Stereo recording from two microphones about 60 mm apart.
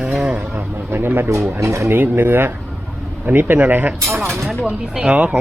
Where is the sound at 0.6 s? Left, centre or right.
Right.